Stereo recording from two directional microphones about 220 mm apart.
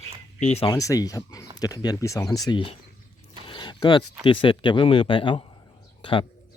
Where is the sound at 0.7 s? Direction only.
15° left (ahead or behind).